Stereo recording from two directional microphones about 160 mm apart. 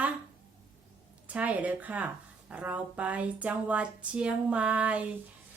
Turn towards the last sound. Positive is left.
turn(degrees=-10)  # may be behind; listen again after turning